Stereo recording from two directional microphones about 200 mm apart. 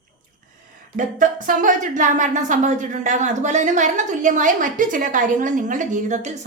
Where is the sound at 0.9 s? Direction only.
40° right (ahead or behind).